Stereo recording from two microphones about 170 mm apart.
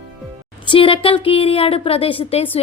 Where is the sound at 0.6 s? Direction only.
30° left (ahead or behind).